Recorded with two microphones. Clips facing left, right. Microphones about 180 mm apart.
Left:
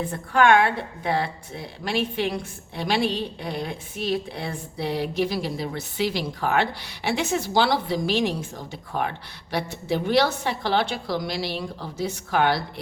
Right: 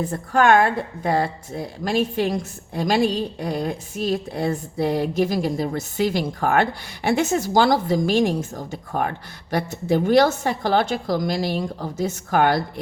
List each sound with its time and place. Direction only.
0.1 s a woman's voice: 45° right (ahead or behind)